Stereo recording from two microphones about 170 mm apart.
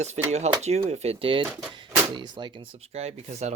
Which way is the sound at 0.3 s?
40° right (ahead or behind).